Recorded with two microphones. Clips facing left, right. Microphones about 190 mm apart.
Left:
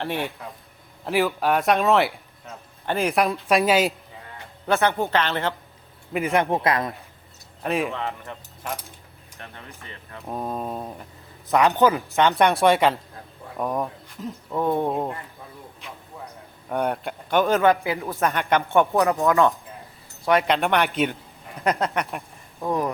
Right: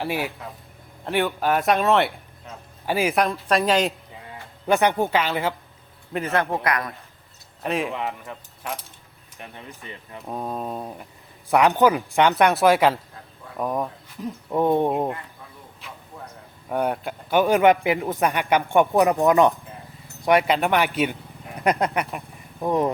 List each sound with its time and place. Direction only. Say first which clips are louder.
0.0 s speech: right 1 dB; 5° right (ahead or behind)
4.6 s a man's voice: right 2 dB; 15° right (ahead or behind)
6.1 s a man's voice: left 2 dB; 15° left (ahead or behind)
7.6 s speech: even; centre (ahead or behind)
9.4 s a man's voice: right 2 dB; 15° right (ahead or behind)
10.2 s speech: even; centre (ahead or behind)
11.4 s a man's voice: right 1 dB; 10° right (ahead or behind)
12.3 s speech: even; 5° right (ahead or behind)
14.5 s a man's voice: right 3 dB; 20° right (ahead or behind)
16.6 s a man's voice: right 1 dB; 5° right (ahead or behind)
20.2 s a man's voice: right 1 dB; 10° right (ahead or behind)